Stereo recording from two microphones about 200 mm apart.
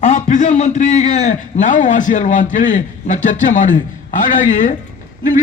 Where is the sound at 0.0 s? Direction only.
35° left (ahead or behind).